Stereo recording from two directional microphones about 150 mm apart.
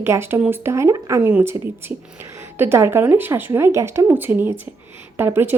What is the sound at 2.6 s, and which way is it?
Speech, 15° right (ahead or behind).